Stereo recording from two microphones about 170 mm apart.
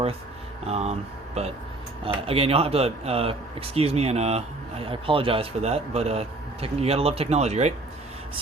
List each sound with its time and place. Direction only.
0.6 s speech: 40° right (ahead or behind)
2.2 s speech: 35° right (ahead or behind)